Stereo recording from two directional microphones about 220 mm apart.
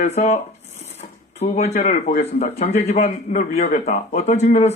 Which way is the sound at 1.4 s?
30° left (ahead or behind).